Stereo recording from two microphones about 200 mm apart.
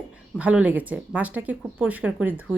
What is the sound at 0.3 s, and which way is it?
Speech, 5° right (ahead or behind).